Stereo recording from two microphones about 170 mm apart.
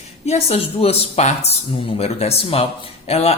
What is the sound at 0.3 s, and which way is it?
Speech, 40° left (ahead or behind).